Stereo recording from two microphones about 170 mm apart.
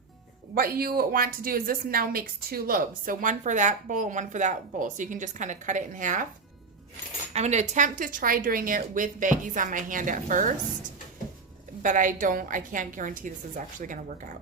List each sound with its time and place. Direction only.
0.5 s a woman's voice: 60° right (ahead or behind)
7.3 s a woman's voice: 40° right (ahead or behind)
11.8 s a woman's voice: 50° right (ahead or behind)